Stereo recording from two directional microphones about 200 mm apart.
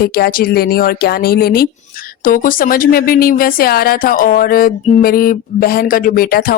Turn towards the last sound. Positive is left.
turn(degrees=50)  # may be behind; listen again after turning